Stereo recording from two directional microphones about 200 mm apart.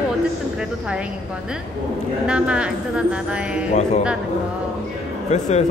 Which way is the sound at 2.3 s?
5° right (ahead or behind).